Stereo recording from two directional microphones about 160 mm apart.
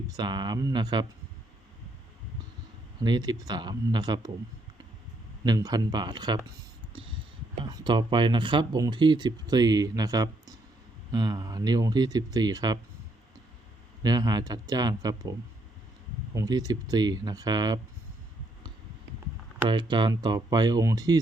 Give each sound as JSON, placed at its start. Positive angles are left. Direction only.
{"t": 0.2, "sound": "speech", "side_deg": -25}
{"t": 3.0, "sound": "speech", "side_deg": -25}
{"t": 5.5, "sound": "speech", "side_deg": -25}
{"t": 6.9, "sound": "a sound", "side_deg": -35}
{"t": 7.6, "sound": "speech", "side_deg": -25}
{"t": 14.0, "sound": "speech", "side_deg": -25}
{"t": 19.6, "sound": "speech", "side_deg": -30}